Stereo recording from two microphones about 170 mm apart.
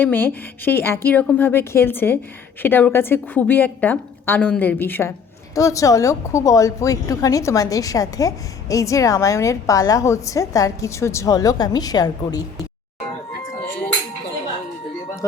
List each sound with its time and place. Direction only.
0.0 s a woman's voice: 10° left (ahead or behind)